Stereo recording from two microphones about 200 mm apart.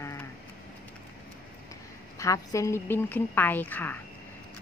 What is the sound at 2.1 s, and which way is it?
Speech, 15° left (ahead or behind).